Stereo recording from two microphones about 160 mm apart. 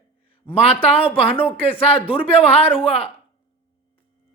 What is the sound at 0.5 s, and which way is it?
Speech, 40° left (ahead or behind).